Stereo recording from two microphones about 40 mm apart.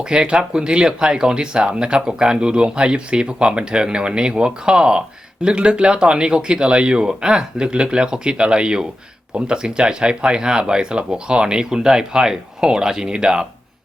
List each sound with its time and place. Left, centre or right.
0.0 s speech: right